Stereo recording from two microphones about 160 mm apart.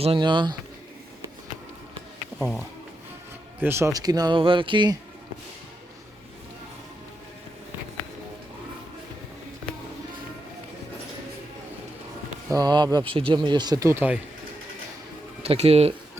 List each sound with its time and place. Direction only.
0.0 s speech: 30° right (ahead or behind)
2.4 s speech: centre (ahead or behind)
3.6 s speech: 15° right (ahead or behind)
12.5 s speech: 25° right (ahead or behind)
15.4 s speech: 40° right (ahead or behind)